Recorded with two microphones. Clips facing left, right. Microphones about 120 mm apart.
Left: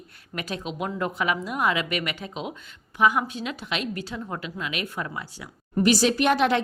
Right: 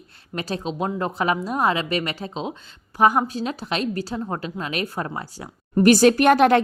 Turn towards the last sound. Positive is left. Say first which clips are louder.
# right 6 dB
turn(degrees=-50)  # may be behind; listen again after turning